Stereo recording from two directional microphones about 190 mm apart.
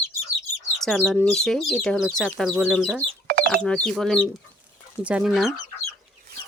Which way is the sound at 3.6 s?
5° left (ahead or behind).